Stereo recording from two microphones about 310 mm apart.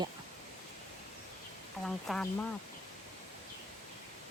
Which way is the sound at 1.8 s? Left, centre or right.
Centre.